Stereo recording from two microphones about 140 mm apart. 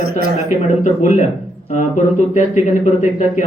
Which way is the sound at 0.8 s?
60° left (ahead or behind).